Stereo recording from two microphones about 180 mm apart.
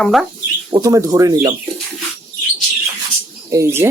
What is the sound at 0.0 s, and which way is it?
Speech, centre (ahead or behind).